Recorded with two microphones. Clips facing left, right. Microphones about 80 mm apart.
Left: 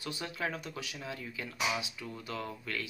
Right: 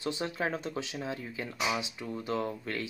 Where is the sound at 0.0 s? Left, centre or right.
Right.